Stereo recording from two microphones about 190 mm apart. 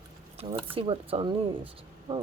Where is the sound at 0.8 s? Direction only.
30° right (ahead or behind).